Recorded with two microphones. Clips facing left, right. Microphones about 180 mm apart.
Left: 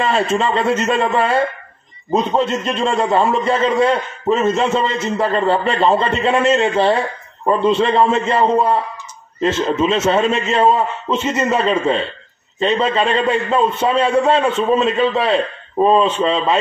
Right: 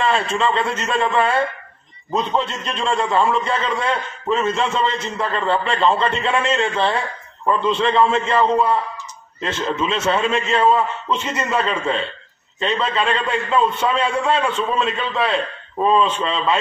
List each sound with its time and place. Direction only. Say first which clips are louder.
0.0 s a man's voice: left 2 dB; 40° left (ahead or behind)